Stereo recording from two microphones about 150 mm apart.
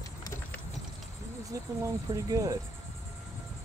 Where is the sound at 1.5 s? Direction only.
25° right (ahead or behind).